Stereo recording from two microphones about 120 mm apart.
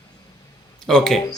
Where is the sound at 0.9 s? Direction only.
5° left (ahead or behind).